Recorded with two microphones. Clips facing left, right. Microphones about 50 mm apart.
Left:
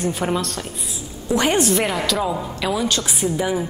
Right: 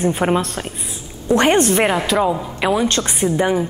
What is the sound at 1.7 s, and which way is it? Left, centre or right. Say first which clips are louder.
A woman's voice: right 4 dB; right.